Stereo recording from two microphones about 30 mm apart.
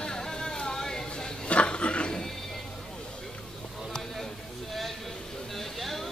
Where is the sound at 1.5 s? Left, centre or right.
Left.